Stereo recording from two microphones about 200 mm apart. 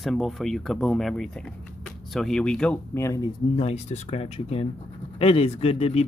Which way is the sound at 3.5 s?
30° left (ahead or behind).